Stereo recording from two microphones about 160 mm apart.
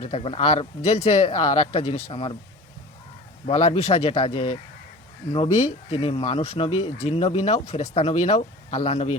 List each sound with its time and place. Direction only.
0.0 s speech: 40° left (ahead or behind)
3.4 s speech: 45° left (ahead or behind)